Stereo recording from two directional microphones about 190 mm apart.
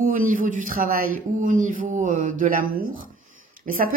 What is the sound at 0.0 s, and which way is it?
Speech, 45° right (ahead or behind).